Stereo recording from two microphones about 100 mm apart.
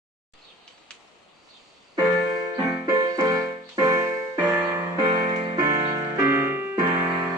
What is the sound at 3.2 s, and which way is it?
Music, 30° right (ahead or behind).